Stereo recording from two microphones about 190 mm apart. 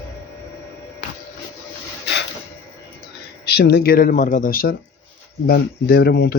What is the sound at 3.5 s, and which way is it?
Speech, 55° left (ahead or behind).